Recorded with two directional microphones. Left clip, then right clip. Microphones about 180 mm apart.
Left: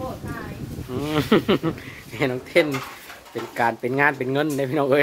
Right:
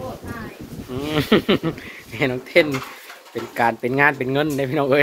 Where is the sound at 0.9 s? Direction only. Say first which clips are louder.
Right 2 dB; 20° left (ahead or behind).